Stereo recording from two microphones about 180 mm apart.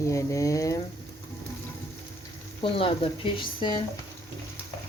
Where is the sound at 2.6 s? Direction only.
30° left (ahead or behind).